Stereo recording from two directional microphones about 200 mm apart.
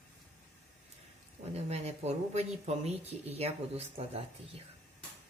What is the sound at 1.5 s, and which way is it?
Speech, 30° right (ahead or behind).